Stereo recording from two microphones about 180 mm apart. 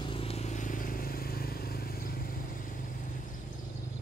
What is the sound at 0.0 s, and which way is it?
Vehicle, 30° left (ahead or behind).